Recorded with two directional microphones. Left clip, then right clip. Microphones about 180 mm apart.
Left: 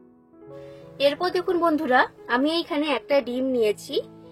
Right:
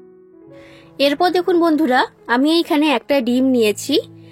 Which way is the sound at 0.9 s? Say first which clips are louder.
Right 7 dB; 50° right (ahead or behind).